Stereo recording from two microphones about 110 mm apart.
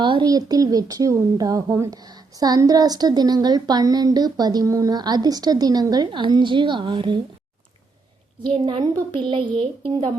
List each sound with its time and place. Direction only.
0.0 s speech: 45° right (ahead or behind)
8.6 s a woman's voice: 45° right (ahead or behind)
9.6 s a woman's voice: 55° right (ahead or behind)